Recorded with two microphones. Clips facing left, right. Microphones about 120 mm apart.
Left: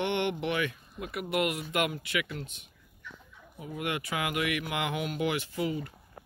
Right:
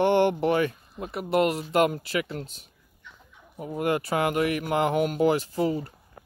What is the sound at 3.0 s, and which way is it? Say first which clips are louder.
Fowl: left 3 dB; 20° right (ahead or behind).